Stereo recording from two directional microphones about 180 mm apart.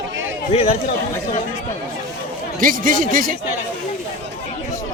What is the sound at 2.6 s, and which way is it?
Speech, 50° right (ahead or behind).